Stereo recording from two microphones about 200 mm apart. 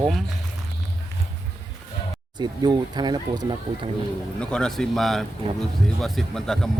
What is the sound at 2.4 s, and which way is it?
Speech, 20° right (ahead or behind).